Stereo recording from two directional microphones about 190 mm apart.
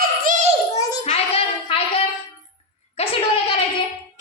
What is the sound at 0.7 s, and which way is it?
Speech, 20° left (ahead or behind).